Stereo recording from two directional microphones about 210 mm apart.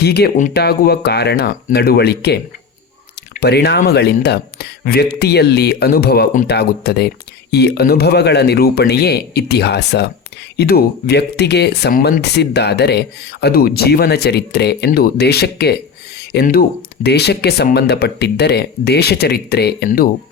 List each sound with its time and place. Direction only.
0.0 s speech: 50° left (ahead or behind)
3.4 s speech: 50° left (ahead or behind)